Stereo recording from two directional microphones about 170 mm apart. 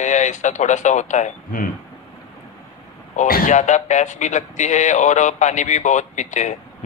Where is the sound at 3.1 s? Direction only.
50° left (ahead or behind).